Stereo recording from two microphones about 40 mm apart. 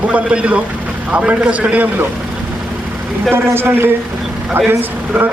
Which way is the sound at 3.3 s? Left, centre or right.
Right.